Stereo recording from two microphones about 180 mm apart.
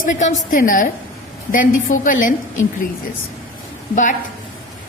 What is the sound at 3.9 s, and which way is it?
Speech, 45° left (ahead or behind).